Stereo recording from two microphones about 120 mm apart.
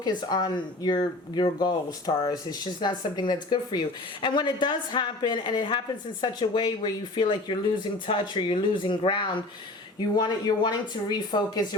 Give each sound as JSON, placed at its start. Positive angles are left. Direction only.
{"t": 0.0, "sound": "speech", "side_deg": 35}